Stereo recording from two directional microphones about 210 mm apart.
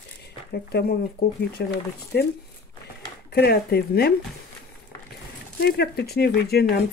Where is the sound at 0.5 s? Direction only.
50° left (ahead or behind).